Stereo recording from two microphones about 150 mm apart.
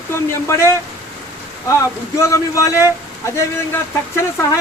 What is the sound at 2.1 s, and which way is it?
Speech, 20° left (ahead or behind).